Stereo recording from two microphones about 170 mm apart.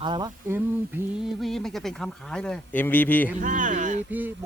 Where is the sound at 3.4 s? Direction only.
50° right (ahead or behind).